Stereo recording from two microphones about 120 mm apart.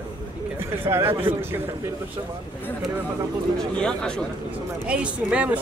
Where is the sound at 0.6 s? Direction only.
20° right (ahead or behind).